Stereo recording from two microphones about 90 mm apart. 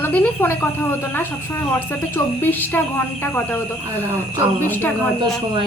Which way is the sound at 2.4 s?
20° left (ahead or behind).